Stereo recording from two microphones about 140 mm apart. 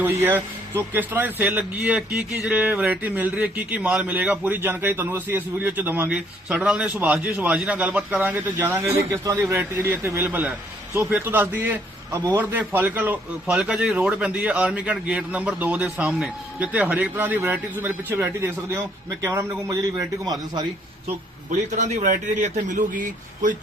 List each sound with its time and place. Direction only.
0.0 s a man's voice: 15° right (ahead or behind)
21.5 s a man's voice: 55° right (ahead or behind)